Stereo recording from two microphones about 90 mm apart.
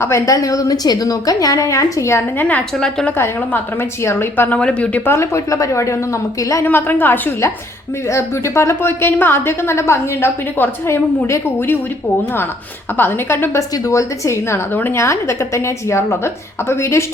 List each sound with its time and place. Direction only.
0.0 s a woman's voice: 35° left (ahead or behind)
2.4 s a woman's voice: 15° left (ahead or behind)
4.0 s a woman's voice: 25° left (ahead or behind)
5.0 s a woman's voice: 30° left (ahead or behind)
6.7 s a woman's voice: 20° left (ahead or behind)
13.0 s a woman's voice: 25° left (ahead or behind)
13.6 s a woman's voice: 40° left (ahead or behind)